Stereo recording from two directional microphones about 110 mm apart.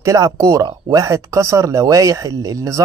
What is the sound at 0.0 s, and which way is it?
Speech, 30° right (ahead or behind).